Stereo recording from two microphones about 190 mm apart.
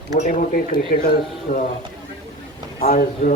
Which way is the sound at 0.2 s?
45° left (ahead or behind).